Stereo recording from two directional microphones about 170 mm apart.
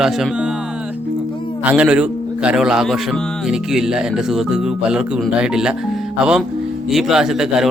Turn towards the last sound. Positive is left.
turn(degrees=-5)  # may be behind; listen again after turning